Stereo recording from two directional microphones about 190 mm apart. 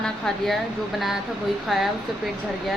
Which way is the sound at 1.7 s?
Centre (ahead or behind).